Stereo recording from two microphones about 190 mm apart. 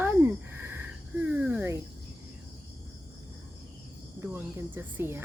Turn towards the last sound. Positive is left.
turn(degrees=-10)  # may be behind; listen again after turning